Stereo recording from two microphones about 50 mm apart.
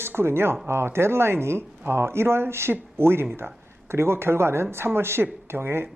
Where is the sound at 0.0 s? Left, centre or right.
Right.